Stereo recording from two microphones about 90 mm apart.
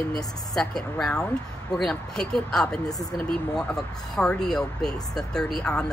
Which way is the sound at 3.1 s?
10° left (ahead or behind).